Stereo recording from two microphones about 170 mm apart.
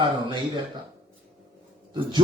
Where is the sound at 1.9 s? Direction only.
30° right (ahead or behind).